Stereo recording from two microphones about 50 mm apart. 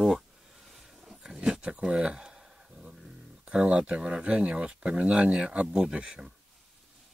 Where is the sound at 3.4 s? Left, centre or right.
Right.